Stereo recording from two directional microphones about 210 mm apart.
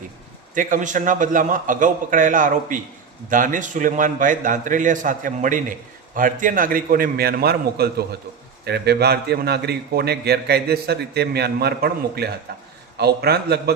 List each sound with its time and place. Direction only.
0.5 s a man's voice: 40° right (ahead or behind)